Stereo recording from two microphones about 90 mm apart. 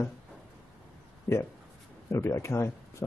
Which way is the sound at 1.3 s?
30° left (ahead or behind).